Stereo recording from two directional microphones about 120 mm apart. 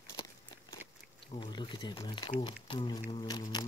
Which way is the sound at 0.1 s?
30° left (ahead or behind).